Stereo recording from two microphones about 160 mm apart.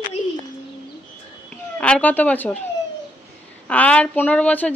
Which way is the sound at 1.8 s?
10° left (ahead or behind).